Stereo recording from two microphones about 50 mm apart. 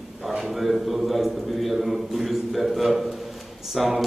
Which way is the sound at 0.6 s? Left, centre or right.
Centre.